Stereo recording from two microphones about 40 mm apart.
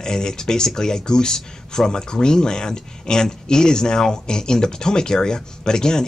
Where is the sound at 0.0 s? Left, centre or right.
Centre.